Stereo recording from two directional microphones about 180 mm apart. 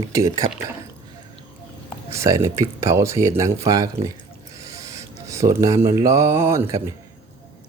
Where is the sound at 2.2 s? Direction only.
15° right (ahead or behind).